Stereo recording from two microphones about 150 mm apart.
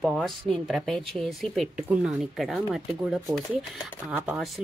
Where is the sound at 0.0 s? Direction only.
Centre (ahead or behind).